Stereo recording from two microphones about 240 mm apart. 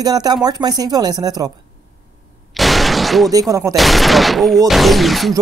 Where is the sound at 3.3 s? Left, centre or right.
Centre.